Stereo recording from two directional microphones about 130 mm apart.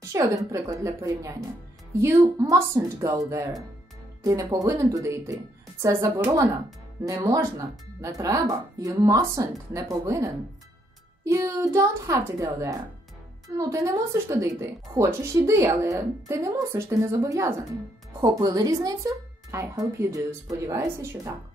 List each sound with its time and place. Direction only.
0.1 s speech: 25° right (ahead or behind)